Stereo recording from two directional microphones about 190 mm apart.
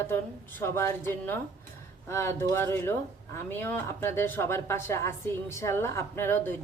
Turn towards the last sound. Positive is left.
turn(degrees=10)  # may be behind; listen again after turning